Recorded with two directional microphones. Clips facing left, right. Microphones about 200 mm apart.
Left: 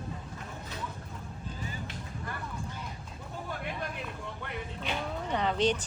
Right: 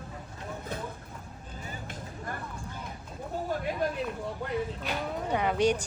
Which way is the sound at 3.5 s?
40° right (ahead or behind).